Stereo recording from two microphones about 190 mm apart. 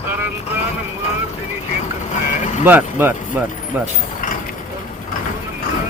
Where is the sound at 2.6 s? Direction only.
10° right (ahead or behind).